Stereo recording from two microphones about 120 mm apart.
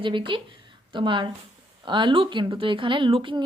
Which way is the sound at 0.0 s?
45° right (ahead or behind).